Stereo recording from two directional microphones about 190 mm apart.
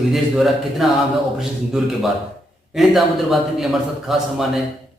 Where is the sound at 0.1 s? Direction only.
Centre (ahead or behind).